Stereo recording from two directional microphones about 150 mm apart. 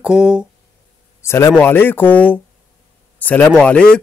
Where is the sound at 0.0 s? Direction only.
5° right (ahead or behind).